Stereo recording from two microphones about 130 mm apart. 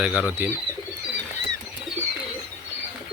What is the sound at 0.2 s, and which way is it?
Speech, 10° right (ahead or behind).